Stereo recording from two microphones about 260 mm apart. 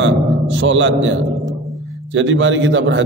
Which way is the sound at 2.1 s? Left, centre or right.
Right.